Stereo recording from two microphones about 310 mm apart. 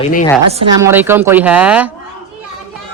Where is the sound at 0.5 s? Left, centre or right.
Centre.